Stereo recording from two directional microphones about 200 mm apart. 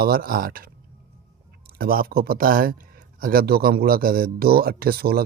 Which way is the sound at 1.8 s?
45° right (ahead or behind).